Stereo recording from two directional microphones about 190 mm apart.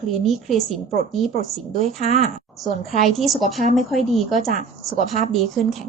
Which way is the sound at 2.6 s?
Centre (ahead or behind).